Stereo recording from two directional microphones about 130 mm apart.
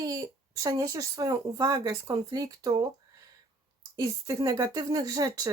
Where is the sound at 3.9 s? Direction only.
30° right (ahead or behind).